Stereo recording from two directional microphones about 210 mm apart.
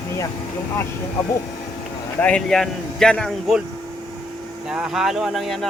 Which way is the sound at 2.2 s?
5° left (ahead or behind).